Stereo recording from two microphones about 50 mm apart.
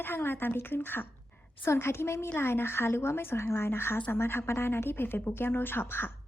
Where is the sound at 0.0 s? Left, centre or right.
Left.